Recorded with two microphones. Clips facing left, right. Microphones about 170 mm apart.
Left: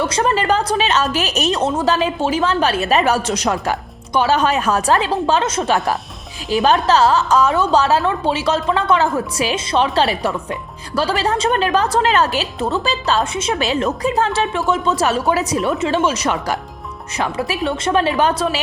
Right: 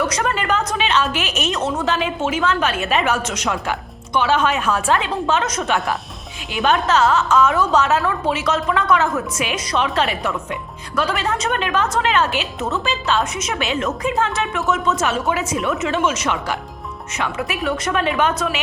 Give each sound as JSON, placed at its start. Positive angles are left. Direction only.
{"t": 0.0, "sound": "a woman's voice", "side_deg": 30}